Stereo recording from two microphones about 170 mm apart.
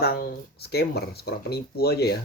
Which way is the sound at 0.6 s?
70° left (ahead or behind).